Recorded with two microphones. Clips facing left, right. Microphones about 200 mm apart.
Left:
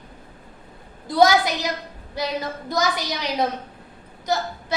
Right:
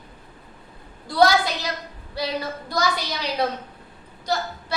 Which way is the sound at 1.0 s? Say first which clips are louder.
Left 1 dB; 15° left (ahead or behind).